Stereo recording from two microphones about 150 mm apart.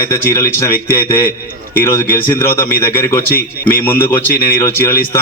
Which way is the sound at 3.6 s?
15° left (ahead or behind).